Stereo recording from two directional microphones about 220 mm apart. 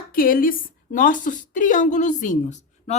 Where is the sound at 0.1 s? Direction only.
40° left (ahead or behind).